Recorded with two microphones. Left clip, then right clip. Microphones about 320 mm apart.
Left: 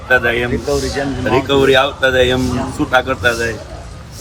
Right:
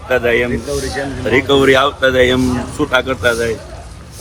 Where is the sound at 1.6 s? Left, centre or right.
Right.